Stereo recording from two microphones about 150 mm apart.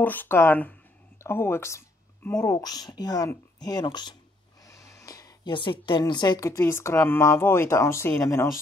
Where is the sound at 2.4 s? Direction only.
25° left (ahead or behind).